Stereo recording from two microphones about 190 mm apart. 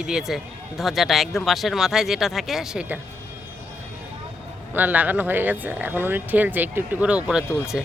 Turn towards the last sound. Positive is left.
turn(degrees=-5)  # may be behind; listen again after turning